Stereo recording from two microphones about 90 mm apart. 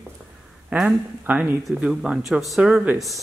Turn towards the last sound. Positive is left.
turn(degrees=0)  # may be behind; listen again after turning